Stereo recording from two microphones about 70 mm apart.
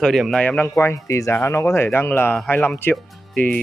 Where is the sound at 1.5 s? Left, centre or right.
Left.